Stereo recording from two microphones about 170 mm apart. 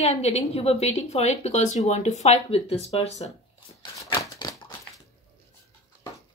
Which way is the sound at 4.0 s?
25° left (ahead or behind).